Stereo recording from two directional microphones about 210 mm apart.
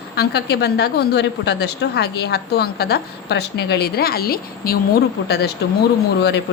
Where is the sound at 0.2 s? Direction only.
50° left (ahead or behind).